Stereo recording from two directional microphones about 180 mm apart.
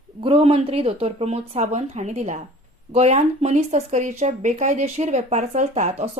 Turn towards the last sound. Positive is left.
turn(degrees=-40)  # may be behind; listen again after turning